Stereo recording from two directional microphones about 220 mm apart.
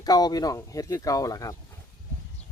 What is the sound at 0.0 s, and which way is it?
Speech, 20° left (ahead or behind).